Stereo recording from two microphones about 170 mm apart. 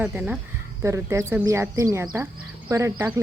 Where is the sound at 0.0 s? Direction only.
10° right (ahead or behind).